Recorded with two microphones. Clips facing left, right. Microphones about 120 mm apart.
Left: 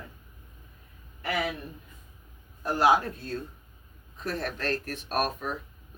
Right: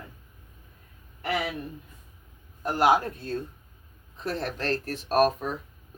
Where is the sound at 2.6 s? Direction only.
20° right (ahead or behind).